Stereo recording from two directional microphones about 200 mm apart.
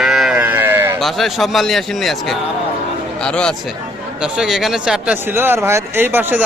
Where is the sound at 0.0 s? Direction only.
Centre (ahead or behind).